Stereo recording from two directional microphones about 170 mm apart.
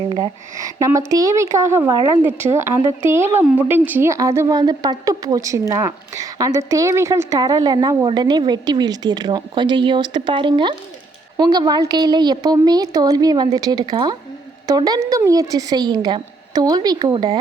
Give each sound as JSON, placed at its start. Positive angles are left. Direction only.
{"t": 0.1, "sound": "speech", "side_deg": -20}